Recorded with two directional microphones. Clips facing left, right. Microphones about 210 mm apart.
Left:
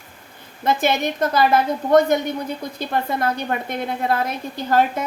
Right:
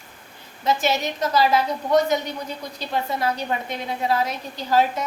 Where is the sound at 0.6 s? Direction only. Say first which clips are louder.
Left 2 dB; 55° left (ahead or behind).